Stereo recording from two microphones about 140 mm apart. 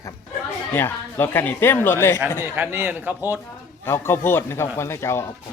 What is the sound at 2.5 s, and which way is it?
Speech, 15° right (ahead or behind).